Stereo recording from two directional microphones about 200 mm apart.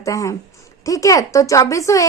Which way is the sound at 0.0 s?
15° left (ahead or behind).